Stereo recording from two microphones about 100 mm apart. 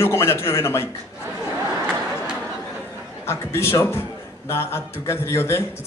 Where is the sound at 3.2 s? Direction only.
25° left (ahead or behind).